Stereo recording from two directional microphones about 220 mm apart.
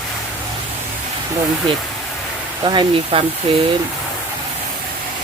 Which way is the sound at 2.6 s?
20° right (ahead or behind).